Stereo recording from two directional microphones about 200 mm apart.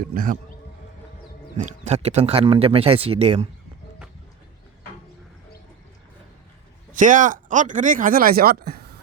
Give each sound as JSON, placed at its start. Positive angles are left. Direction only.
{"t": 0.0, "sound": "speech", "side_deg": -40}
{"t": 1.5, "sound": "speech", "side_deg": -35}
{"t": 6.9, "sound": "speech", "side_deg": -40}